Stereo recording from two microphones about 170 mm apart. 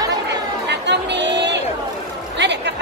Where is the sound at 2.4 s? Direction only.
90° right.